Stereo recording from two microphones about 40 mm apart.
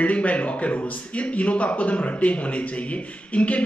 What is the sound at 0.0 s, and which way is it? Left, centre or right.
A man's voice, left.